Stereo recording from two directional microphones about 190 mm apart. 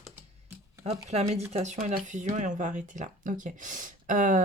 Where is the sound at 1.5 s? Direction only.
40° right (ahead or behind).